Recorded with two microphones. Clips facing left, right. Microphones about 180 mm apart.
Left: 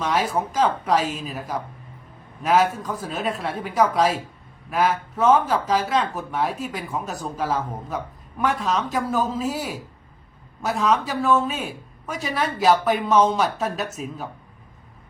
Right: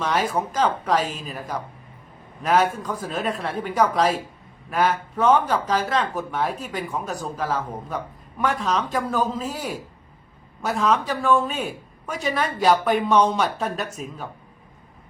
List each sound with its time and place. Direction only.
0.3 s speech: centre (ahead or behind)